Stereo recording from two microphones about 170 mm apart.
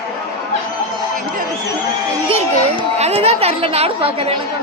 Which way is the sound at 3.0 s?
35° right (ahead or behind).